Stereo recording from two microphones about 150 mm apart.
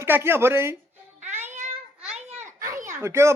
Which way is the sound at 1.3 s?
15° right (ahead or behind).